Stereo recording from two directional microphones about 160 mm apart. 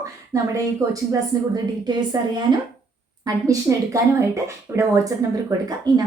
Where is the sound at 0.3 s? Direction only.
20° right (ahead or behind).